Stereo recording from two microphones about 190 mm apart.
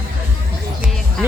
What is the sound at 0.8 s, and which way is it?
Music, centre (ahead or behind).